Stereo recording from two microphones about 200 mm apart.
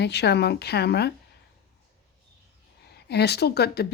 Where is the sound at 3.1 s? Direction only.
55° left (ahead or behind).